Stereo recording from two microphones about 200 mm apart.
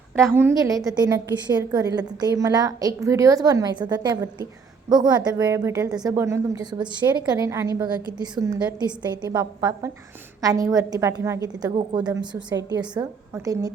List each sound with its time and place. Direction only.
0.2 s a woman's voice: 10° right (ahead or behind)